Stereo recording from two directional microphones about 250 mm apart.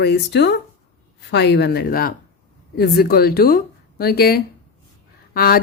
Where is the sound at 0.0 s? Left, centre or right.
Left.